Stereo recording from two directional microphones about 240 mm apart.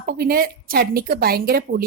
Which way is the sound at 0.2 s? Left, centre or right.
Right.